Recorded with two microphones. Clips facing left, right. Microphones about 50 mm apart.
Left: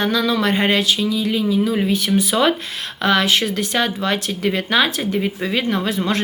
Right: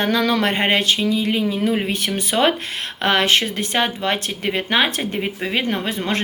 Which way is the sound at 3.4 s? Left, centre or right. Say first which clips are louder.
Left 1 dB; right.